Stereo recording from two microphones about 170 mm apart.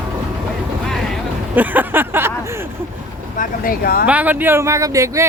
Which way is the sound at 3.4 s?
60° left (ahead or behind).